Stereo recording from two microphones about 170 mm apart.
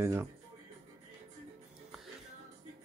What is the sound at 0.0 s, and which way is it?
Speech, 15° right (ahead or behind).